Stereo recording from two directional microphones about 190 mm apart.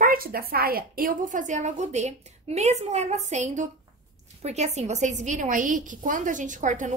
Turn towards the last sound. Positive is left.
turn(degrees=-40)  # may be behind; listen again after turning